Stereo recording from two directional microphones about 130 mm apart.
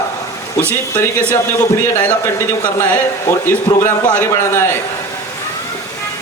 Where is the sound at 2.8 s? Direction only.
15° left (ahead or behind).